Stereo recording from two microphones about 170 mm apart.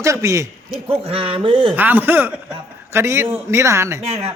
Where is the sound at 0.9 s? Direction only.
35° right (ahead or behind).